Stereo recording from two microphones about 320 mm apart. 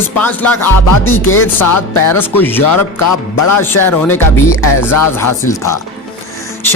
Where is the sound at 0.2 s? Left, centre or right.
Centre.